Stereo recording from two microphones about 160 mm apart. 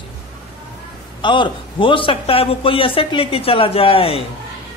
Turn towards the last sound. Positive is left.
turn(degrees=35)  # may be behind; listen again after turning